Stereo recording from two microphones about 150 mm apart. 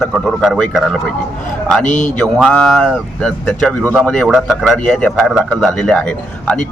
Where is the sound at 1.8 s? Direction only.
55° left (ahead or behind).